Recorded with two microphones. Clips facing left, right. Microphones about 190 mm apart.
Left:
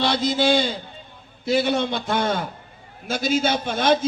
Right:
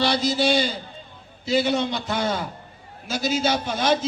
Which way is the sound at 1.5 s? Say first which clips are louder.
Left 1 dB; 55° left (ahead or behind).